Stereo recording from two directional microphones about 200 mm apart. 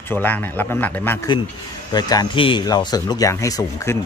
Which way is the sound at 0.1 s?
10° left (ahead or behind).